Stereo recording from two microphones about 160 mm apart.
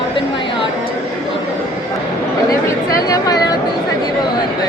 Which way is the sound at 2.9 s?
20° left (ahead or behind).